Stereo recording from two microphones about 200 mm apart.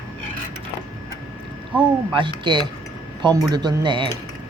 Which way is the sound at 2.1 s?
25° right (ahead or behind).